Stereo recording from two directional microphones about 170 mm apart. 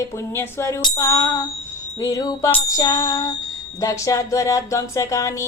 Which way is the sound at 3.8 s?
20° left (ahead or behind).